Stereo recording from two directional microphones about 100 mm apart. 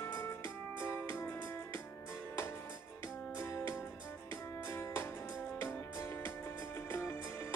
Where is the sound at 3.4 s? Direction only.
25° left (ahead or behind).